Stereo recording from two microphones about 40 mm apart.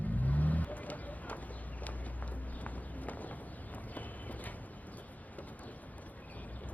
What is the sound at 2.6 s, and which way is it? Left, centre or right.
Run, left.